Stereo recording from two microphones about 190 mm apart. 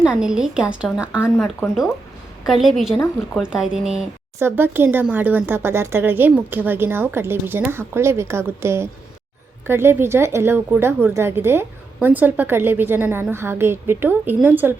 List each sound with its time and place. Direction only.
0.0 s a woman's voice: 5° right (ahead or behind)